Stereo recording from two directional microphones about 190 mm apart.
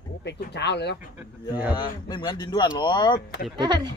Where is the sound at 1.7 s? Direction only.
25° left (ahead or behind).